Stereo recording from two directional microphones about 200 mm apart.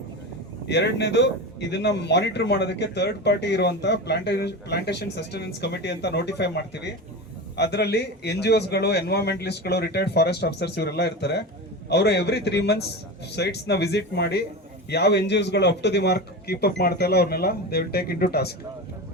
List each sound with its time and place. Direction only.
0.7 s a man's voice: 60° left (ahead or behind)